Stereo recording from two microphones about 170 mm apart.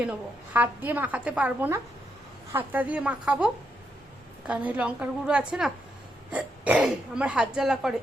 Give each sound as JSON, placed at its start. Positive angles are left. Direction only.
{"t": 0.0, "sound": "a woman's voice", "side_deg": -10}